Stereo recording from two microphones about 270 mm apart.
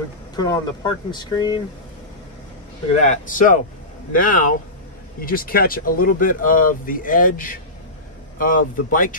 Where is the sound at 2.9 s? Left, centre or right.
Left.